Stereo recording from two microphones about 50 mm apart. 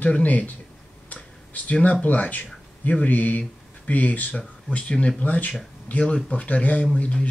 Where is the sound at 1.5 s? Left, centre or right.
Left.